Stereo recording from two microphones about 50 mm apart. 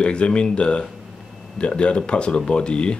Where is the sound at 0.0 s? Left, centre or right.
Left.